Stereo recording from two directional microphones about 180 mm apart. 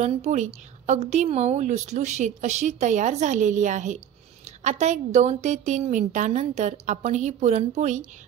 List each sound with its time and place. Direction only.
0.0 s a woman's voice: 40° right (ahead or behind)